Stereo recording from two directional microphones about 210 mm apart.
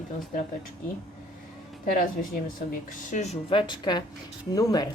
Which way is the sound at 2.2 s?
40° left (ahead or behind).